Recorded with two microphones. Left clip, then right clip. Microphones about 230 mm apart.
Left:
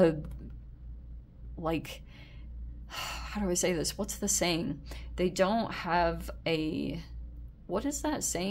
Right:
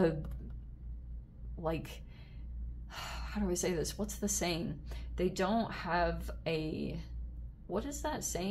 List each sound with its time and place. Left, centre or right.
1.6 s a woman's voice: left